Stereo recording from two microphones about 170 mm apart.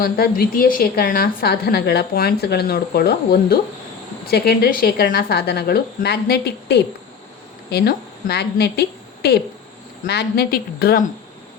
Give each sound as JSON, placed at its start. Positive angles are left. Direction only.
{"t": 0.0, "sound": "a woman's voice", "side_deg": 60}